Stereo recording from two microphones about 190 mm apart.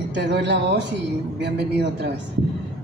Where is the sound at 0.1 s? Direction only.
65° right (ahead or behind).